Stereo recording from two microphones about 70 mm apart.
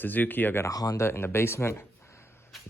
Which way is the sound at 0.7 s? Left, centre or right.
Left.